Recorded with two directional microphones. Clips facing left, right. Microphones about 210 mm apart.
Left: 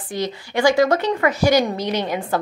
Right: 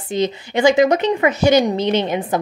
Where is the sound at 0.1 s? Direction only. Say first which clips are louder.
Right 5 dB; 20° right (ahead or behind).